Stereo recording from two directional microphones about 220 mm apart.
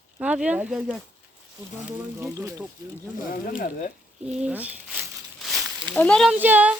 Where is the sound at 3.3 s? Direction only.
40° left (ahead or behind).